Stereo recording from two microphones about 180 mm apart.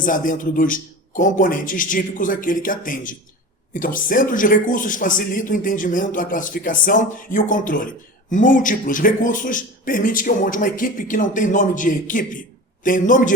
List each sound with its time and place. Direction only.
0.0 s speech: 50° left (ahead or behind)